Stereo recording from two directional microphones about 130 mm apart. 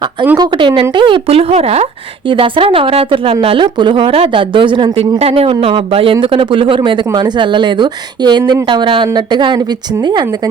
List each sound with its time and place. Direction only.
0.3 s a woman's voice: 35° right (ahead or behind)